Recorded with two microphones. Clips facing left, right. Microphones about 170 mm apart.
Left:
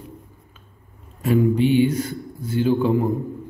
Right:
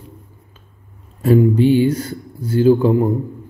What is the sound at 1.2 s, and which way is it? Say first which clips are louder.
A man's voice: right 5 dB; 35° right (ahead or behind).